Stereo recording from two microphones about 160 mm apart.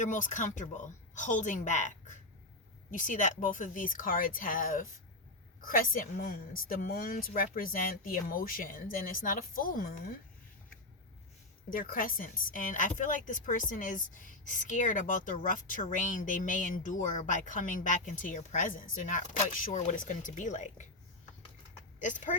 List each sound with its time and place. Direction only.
0.0 s speech: 55° left (ahead or behind)
11.7 s speech: 60° left (ahead or behind)
22.0 s speech: 50° left (ahead or behind)